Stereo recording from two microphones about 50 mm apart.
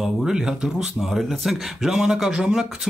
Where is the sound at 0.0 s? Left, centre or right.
Centre.